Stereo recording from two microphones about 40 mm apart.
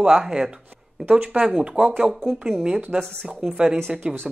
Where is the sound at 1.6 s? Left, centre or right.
Right.